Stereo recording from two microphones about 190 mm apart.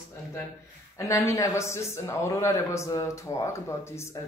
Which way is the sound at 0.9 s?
15° left (ahead or behind).